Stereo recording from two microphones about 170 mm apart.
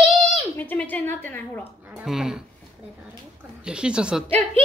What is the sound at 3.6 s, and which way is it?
Speech, 5° right (ahead or behind).